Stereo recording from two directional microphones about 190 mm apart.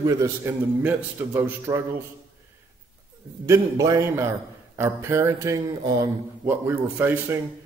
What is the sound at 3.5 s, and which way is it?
A man's voice, 15° right (ahead or behind).